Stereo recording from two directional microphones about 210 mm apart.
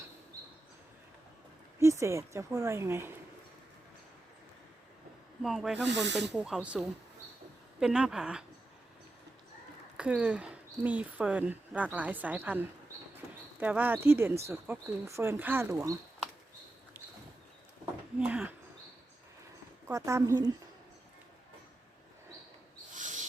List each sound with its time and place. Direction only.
1.8 s speech: 15° right (ahead or behind)
5.4 s speech: centre (ahead or behind)
5.9 s speech: 55° right (ahead or behind)
6.3 s a woman's voice: 5° right (ahead or behind)
10.0 s speech: 5° right (ahead or behind)
18.2 s speech: 5° right (ahead or behind)
19.9 s speech: 15° right (ahead or behind)
23.0 s owl: 35° right (ahead or behind)